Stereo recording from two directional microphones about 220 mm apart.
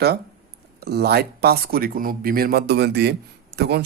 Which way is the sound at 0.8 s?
50° right (ahead or behind).